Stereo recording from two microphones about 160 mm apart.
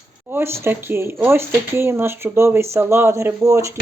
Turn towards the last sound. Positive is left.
turn(degrees=-20)  # may be behind; listen again after turning